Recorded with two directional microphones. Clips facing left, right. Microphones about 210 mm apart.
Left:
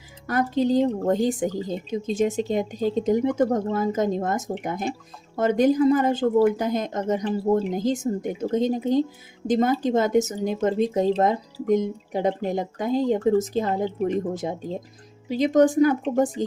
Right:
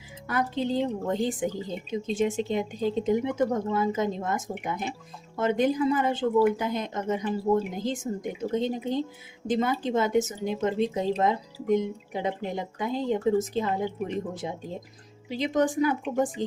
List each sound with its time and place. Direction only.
0.3 s speech: 40° left (ahead or behind)